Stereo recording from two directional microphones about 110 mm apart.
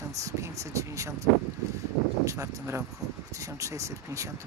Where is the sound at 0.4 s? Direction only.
30° right (ahead or behind).